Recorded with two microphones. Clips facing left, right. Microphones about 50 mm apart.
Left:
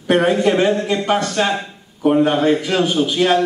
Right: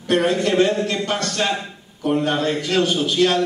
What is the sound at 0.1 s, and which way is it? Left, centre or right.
A man's voice, centre.